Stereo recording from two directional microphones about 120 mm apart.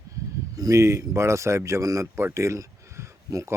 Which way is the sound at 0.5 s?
30° right (ahead or behind).